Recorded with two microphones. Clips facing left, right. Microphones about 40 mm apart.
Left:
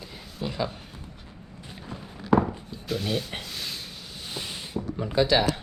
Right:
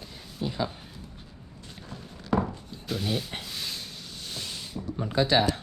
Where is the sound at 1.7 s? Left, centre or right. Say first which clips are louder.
Left 3 dB; centre.